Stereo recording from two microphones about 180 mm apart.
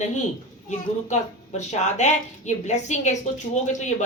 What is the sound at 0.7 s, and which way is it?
A woman's voice, 40° left (ahead or behind).